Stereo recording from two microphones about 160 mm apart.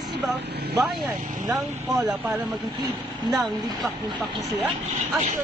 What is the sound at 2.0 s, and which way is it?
Speech, 5° right (ahead or behind).